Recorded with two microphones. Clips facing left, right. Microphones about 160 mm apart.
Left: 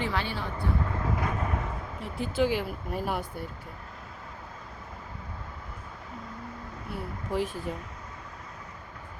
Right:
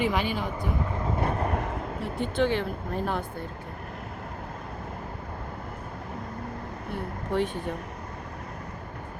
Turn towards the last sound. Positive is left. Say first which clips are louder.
# right 3 dB
turn(degrees=0)  # may be behind; listen again after turning